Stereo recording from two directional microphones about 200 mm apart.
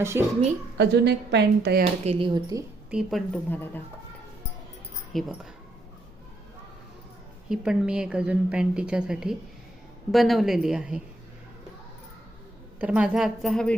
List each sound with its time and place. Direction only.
0.0 s a woman's voice: 15° right (ahead or behind)
0.8 s a woman's voice: 55° right (ahead or behind)
2.0 s speech: 25° right (ahead or behind)
2.9 s a woman's voice: centre (ahead or behind)
5.1 s a woman's voice: centre (ahead or behind)
7.5 s a woman's voice: 5° right (ahead or behind)
12.8 s a woman's voice: 5° right (ahead or behind)